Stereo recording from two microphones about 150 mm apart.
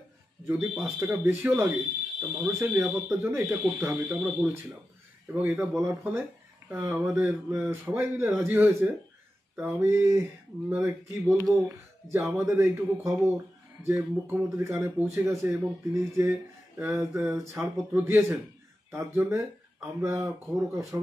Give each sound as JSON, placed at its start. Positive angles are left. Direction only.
{"t": 0.5, "sound": "speech", "side_deg": -15}